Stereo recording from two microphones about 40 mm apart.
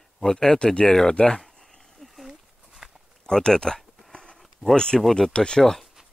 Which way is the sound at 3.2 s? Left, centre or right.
Centre.